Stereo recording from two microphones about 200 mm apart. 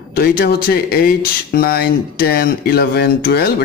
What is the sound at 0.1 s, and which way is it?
Speech, 50° left (ahead or behind).